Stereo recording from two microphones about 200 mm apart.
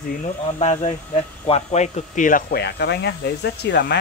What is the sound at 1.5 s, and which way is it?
Speech, 30° left (ahead or behind).